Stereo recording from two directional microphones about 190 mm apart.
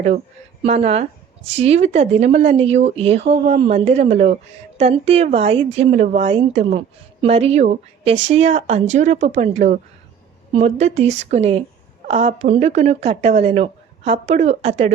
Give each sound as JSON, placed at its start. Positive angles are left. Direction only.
{"t": 0.6, "sound": "speech", "side_deg": -35}